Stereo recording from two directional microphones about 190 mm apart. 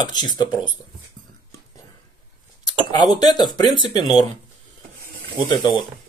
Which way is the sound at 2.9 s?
20° left (ahead or behind).